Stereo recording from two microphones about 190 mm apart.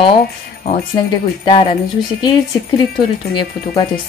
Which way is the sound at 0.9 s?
25° left (ahead or behind).